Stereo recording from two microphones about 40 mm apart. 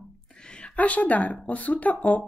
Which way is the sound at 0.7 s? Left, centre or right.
Left.